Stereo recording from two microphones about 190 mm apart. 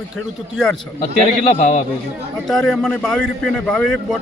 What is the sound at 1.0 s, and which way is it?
Speech, 35° left (ahead or behind).